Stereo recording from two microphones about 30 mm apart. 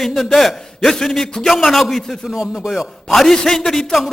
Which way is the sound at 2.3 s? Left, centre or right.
Centre.